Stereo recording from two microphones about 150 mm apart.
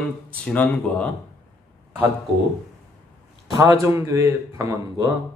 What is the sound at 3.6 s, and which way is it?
A man's voice, 15° right (ahead or behind).